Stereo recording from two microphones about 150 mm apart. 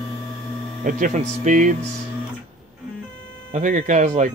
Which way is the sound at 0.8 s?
55° right (ahead or behind).